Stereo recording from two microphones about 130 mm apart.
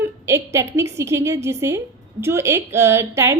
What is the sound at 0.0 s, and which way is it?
A woman's voice, 20° right (ahead or behind).